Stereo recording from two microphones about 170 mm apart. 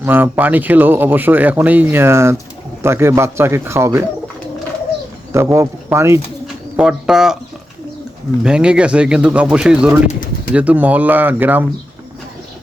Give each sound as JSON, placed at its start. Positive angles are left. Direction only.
{"t": 0.0, "sound": "speech", "side_deg": -10}
{"t": 5.3, "sound": "speech", "side_deg": -15}
{"t": 6.7, "sound": "speech", "side_deg": -5}
{"t": 8.4, "sound": "speech", "side_deg": -5}
{"t": 10.1, "sound": "bird", "side_deg": 50}
{"t": 10.5, "sound": "speech", "side_deg": -10}